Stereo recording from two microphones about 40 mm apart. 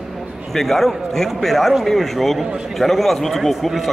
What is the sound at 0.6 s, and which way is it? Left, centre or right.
A man's voice, centre.